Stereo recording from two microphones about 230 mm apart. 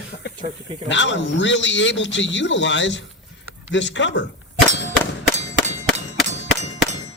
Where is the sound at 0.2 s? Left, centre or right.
Left.